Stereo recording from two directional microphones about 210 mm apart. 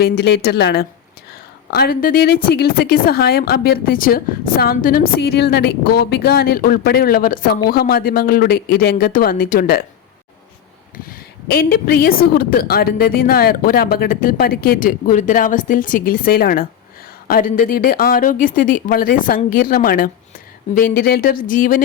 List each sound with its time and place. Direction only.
0.0 s a woman's voice: 50° left (ahead or behind)
11.4 s a woman's voice: 50° left (ahead or behind)